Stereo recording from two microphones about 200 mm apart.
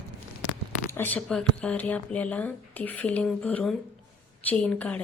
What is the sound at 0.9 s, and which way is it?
A woman's voice, 10° left (ahead or behind).